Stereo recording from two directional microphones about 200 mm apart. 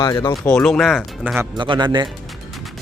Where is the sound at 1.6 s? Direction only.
25° right (ahead or behind).